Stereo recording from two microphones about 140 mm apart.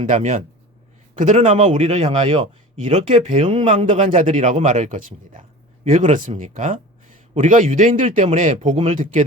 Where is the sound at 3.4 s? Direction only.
50° right (ahead or behind); by 5.4 s 70° right (ahead or behind).